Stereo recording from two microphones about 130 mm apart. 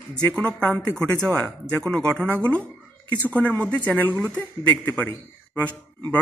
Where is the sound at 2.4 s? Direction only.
10° left (ahead or behind).